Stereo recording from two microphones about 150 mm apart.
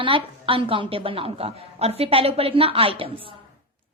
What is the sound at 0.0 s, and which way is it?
A woman's voice, 35° right (ahead or behind).